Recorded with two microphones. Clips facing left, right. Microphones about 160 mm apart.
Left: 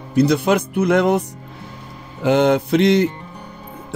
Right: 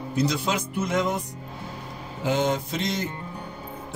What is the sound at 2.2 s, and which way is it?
Music, 65° left (ahead or behind).